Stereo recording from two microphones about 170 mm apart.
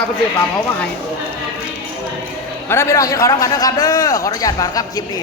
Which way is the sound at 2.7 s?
15° left (ahead or behind).